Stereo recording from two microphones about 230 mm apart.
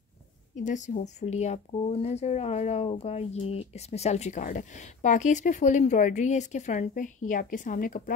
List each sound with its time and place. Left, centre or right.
0.6 s speech: left